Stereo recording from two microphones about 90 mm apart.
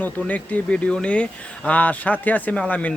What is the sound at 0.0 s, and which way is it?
Speech, 15° left (ahead or behind).